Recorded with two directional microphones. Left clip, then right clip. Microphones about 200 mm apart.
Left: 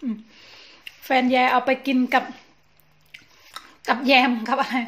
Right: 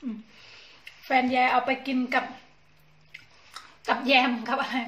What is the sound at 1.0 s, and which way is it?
Speech, 45° left (ahead or behind).